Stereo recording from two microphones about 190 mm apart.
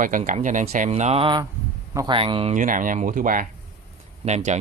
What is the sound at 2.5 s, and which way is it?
Speech, 45° right (ahead or behind).